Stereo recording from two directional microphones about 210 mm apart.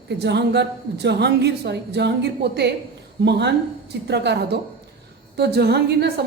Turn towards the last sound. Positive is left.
turn(degrees=-50)  # may be behind; listen again after turning